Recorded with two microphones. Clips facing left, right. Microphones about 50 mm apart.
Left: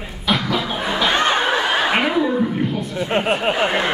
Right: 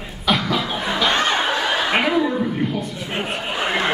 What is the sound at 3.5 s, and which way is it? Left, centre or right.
Speech, left.